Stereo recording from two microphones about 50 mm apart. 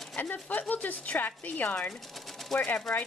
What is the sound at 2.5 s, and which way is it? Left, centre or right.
Speech, centre.